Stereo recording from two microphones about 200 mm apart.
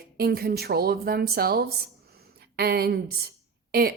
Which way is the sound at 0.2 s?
50° right (ahead or behind).